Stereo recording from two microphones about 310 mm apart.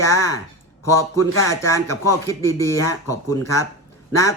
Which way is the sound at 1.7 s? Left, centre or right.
Centre.